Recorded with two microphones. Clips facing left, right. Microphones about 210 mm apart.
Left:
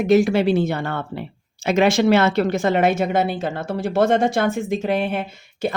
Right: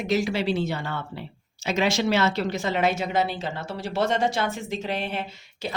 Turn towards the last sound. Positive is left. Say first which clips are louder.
# left 9 dB
turn(degrees=50)  # may be behind; listen again after turning